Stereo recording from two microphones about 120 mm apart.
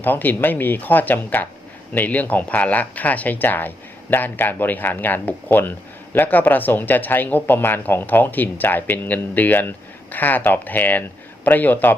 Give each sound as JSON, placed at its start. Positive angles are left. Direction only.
{"t": 0.0, "sound": "speech", "side_deg": 15}